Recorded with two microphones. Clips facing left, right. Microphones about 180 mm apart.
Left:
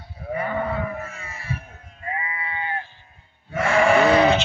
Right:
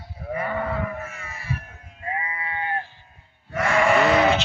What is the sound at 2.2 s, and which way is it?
Sheep, 40° right (ahead or behind).